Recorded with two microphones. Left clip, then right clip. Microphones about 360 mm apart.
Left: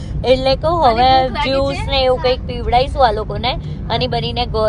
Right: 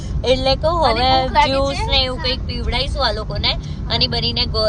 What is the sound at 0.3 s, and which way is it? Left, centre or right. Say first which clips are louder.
Vehicle: left 3 dB; centre.